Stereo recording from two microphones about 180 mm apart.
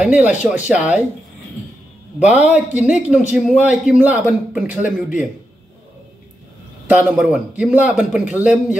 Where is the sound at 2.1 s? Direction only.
40° left (ahead or behind).